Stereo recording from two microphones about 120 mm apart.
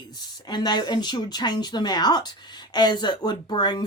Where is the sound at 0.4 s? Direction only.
35° left (ahead or behind).